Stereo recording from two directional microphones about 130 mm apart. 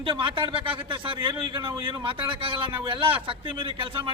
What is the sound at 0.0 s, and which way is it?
A man's voice, 40° right (ahead or behind).